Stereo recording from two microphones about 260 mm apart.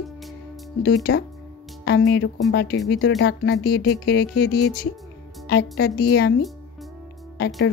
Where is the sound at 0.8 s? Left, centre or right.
Left.